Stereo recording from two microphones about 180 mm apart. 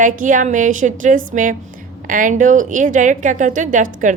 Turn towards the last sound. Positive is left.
turn(degrees=-45)  # may be behind; listen again after turning